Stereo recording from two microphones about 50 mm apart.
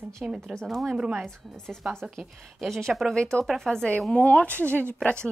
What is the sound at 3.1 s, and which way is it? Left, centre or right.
Speech, centre.